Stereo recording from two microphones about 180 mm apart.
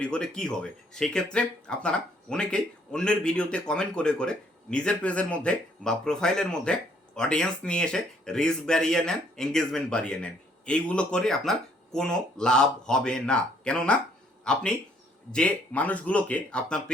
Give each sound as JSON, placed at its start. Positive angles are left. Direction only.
{"t": 0.0, "sound": "speech", "side_deg": 5}